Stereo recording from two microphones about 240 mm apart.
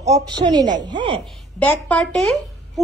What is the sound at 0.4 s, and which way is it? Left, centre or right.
Speech, centre.